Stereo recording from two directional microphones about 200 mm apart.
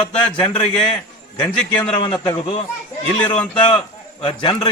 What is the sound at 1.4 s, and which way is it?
Speech, 5° left (ahead or behind).